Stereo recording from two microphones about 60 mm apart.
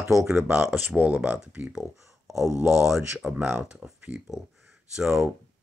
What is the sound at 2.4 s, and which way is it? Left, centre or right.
Speech, right.